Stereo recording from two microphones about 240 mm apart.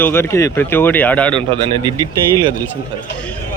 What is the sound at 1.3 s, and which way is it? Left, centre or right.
Speech, right.